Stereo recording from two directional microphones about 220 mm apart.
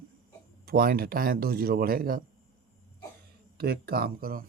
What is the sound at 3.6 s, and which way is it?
Speech, 45° right (ahead or behind).